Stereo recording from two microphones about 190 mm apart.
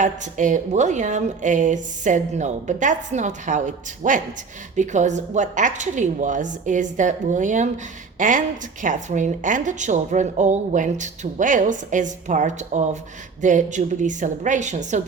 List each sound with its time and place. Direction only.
0.0 s a woman's voice: 40° right (ahead or behind)